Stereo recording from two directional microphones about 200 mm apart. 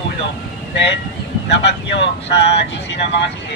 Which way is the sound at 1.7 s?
65° left (ahead or behind).